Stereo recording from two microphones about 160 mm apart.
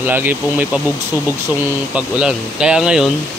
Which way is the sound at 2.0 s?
5° right (ahead or behind).